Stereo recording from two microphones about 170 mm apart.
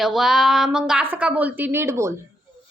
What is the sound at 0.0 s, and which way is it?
A woman's voice, centre (ahead or behind).